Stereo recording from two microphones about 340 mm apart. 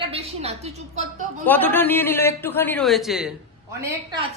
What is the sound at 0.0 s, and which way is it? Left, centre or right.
A woman's voice, centre.